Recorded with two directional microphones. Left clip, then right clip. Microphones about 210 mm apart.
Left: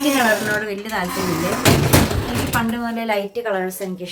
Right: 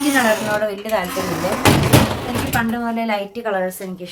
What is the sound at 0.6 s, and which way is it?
Speech, 5° left (ahead or behind).